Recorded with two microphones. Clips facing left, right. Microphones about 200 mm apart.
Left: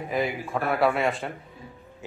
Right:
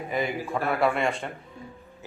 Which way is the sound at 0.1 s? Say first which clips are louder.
Left 1 dB; centre (ahead or behind).